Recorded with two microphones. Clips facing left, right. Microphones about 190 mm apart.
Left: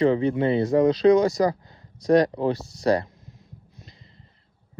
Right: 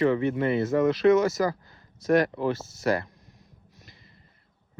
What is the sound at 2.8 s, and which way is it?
Speech, 30° left (ahead or behind).